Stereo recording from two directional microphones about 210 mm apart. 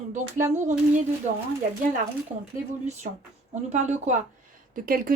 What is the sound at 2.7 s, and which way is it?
Speech, 35° right (ahead or behind).